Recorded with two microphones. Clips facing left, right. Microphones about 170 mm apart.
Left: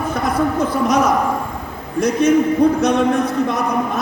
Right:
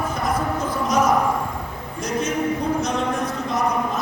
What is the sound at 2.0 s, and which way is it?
Speech, 65° left (ahead or behind).